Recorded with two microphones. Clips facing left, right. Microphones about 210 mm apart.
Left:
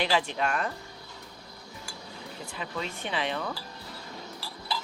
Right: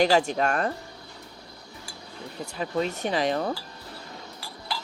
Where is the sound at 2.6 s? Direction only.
45° right (ahead or behind).